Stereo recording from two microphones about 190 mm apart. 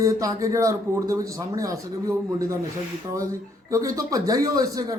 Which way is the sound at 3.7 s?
15° right (ahead or behind).